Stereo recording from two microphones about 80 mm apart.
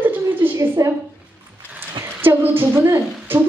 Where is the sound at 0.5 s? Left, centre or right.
Right.